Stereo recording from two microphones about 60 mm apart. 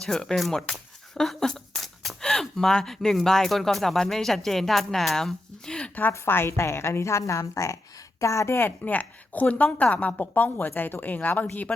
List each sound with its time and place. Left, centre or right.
0.0 s speech: centre
6.2 s a woman's voice: left
8.8 s a woman's voice: left